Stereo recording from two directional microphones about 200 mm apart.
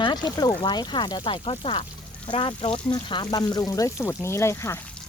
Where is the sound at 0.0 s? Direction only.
20° left (ahead or behind).